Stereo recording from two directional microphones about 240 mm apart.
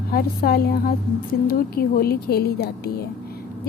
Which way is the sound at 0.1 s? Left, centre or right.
Left.